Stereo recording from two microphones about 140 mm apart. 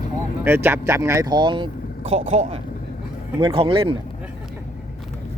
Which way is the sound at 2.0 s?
50° right (ahead or behind).